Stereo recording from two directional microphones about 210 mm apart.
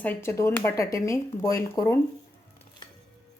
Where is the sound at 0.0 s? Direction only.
10° left (ahead or behind).